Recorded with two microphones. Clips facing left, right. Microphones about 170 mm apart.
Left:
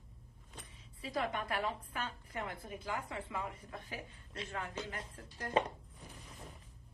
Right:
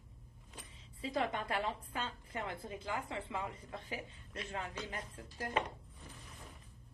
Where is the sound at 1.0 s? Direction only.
25° right (ahead or behind).